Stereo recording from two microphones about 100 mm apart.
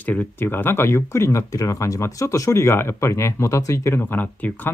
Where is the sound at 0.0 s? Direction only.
15° left (ahead or behind).